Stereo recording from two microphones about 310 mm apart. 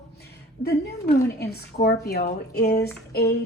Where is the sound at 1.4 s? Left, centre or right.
Left.